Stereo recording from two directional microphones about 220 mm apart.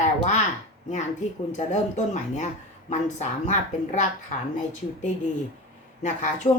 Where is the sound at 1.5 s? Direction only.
30° left (ahead or behind).